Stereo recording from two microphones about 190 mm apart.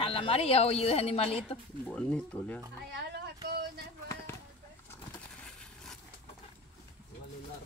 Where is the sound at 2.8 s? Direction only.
60° right (ahead or behind).